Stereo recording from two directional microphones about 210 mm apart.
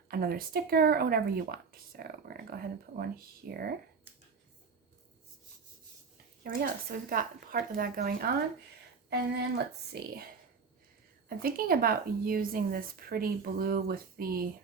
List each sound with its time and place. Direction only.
0.1 s speech: 45° right (ahead or behind)
6.4 s speech: 45° right (ahead or behind)
9.9 s speech: 50° right (ahead or behind)
11.3 s speech: 45° right (ahead or behind)